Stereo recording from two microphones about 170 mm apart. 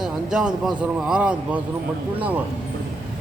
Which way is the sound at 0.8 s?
5° right (ahead or behind).